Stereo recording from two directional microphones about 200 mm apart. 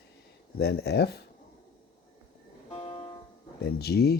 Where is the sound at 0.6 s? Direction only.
55° left (ahead or behind).